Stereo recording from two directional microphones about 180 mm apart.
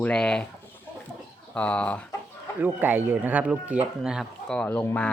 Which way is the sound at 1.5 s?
5° left (ahead or behind).